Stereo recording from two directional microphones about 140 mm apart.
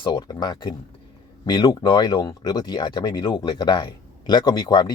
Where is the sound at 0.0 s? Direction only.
30° left (ahead or behind).